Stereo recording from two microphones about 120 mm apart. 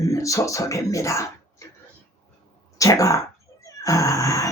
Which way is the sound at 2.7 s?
30° left (ahead or behind).